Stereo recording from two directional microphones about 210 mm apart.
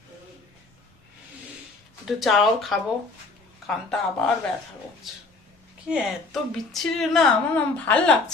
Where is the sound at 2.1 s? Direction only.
Centre (ahead or behind).